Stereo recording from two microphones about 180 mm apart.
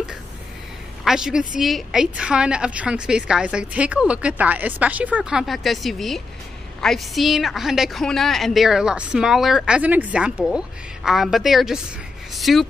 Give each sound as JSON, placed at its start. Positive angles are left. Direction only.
{"t": 1.0, "sound": "a woman's voice", "side_deg": -5}